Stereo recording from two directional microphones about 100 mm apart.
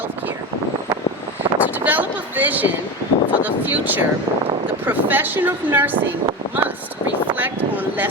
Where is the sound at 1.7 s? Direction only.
15° right (ahead or behind).